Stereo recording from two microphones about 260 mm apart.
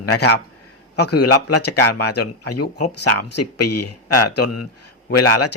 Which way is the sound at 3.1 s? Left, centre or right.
Left.